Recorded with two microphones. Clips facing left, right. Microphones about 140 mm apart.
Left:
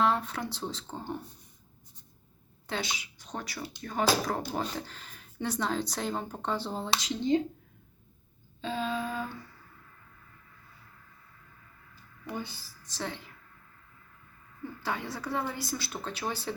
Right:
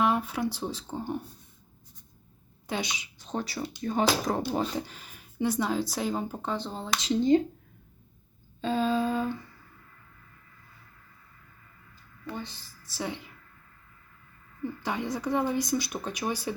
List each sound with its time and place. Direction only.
0.0 s speech: 10° right (ahead or behind)
2.6 s speech: 15° right (ahead or behind); by 6.9 s 5° left (ahead or behind)
7.3 s a woman's voice: 45° right (ahead or behind)
8.6 s a sound: 40° right (ahead or behind)
12.2 s speech: 10° left (ahead or behind)
12.8 s speech: 10° right (ahead or behind)
14.8 s speech: 15° right (ahead or behind)